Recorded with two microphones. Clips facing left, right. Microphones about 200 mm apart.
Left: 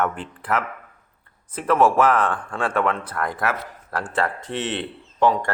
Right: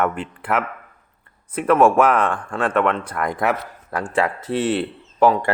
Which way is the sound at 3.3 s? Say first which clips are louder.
Right 4 dB; 15° right (ahead or behind).